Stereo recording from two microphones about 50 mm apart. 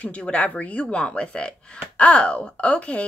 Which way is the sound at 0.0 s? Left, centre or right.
Left.